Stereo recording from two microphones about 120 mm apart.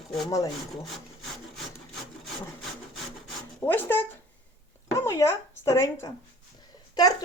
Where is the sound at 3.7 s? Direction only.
20° left (ahead or behind).